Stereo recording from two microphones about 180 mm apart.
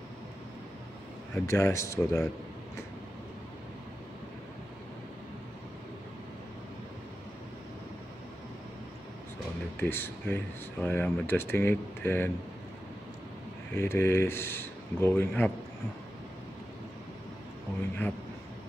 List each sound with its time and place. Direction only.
1.3 s speech: 15° left (ahead or behind)
9.8 s speech: 10° left (ahead or behind)
13.7 s speech: 15° left (ahead or behind)